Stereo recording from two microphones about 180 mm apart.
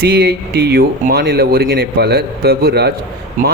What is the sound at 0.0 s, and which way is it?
Speech, 60° right (ahead or behind).